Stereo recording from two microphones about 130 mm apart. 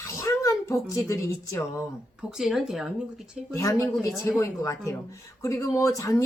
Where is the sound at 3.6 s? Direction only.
25° left (ahead or behind).